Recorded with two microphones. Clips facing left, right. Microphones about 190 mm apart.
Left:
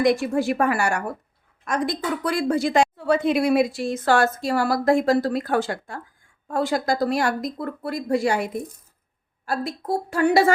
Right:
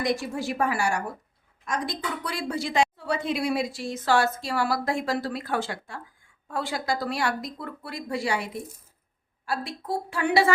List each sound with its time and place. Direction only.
0.0 s a woman's voice: 60° left (ahead or behind); by 10.5 s 45° left (ahead or behind)